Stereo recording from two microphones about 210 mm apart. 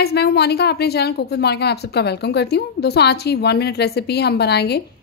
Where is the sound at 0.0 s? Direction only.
50° left (ahead or behind).